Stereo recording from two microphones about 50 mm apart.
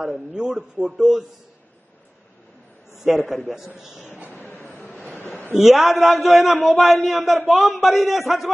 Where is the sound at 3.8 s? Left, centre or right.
Left.